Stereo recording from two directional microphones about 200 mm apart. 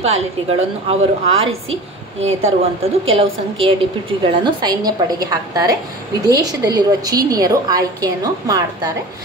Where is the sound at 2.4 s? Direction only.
30° right (ahead or behind).